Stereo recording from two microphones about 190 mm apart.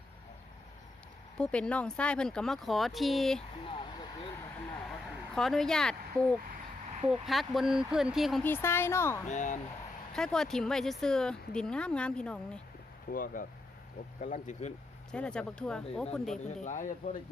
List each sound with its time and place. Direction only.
1.4 s speech: 5° left (ahead or behind)
3.7 s vehicle: 25° left (ahead or behind)
4.9 s a sound: centre (ahead or behind)
7.1 s speech: centre (ahead or behind)
8.4 s speech: 10° left (ahead or behind)
9.3 s speech: 40° left (ahead or behind)
10.1 s speech: 5° left (ahead or behind)
13.1 s speech: 45° left (ahead or behind)
15.1 s speech: 5° left (ahead or behind)
16.6 s speech: 40° left (ahead or behind)